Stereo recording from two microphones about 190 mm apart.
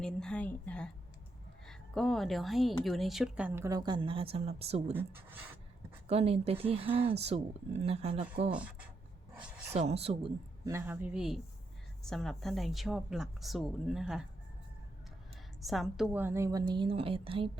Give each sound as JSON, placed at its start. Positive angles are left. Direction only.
{"t": 0.0, "sound": "a woman's voice", "side_deg": 5}
{"t": 6.1, "sound": "speech", "side_deg": -30}
{"t": 9.7, "sound": "speech", "side_deg": -35}
{"t": 10.7, "sound": "speech", "side_deg": -10}
{"t": 15.6, "sound": "speech", "side_deg": 0}